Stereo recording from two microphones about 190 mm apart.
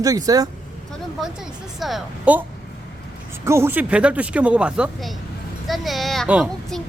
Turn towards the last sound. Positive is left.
turn(degrees=-5)  # may be behind; listen again after turning